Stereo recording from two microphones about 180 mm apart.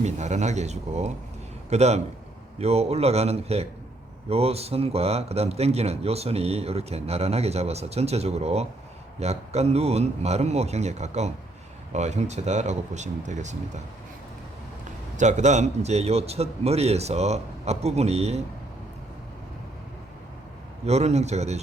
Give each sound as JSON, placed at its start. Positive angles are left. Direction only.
{"t": 0.0, "sound": "speech", "side_deg": -40}
{"t": 15.1, "sound": "speech", "side_deg": -40}
{"t": 20.8, "sound": "speech", "side_deg": -35}